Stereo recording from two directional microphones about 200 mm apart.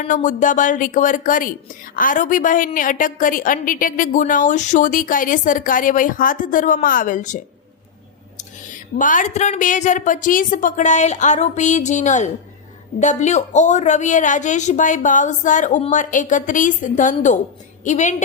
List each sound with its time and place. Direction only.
0.1 s a woman's voice: 40° left (ahead or behind)